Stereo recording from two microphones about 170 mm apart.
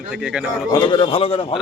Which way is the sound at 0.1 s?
5° right (ahead or behind).